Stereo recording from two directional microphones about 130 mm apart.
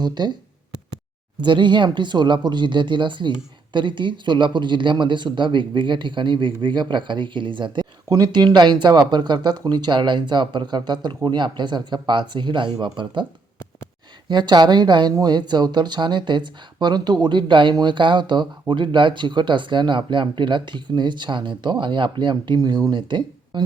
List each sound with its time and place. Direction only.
0.0 s speech: 35° right (ahead or behind)
1.4 s speech: 35° right (ahead or behind)
14.3 s speech: 35° right (ahead or behind)